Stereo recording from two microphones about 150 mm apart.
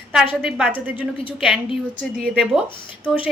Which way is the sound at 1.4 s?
5° right (ahead or behind).